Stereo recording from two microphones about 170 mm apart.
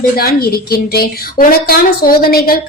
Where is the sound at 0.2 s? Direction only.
65° left (ahead or behind).